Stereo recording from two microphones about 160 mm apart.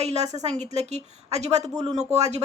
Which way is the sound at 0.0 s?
45° right (ahead or behind).